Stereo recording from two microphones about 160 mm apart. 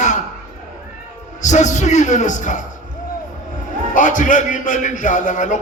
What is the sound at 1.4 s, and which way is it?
A man's voice, 50° left (ahead or behind).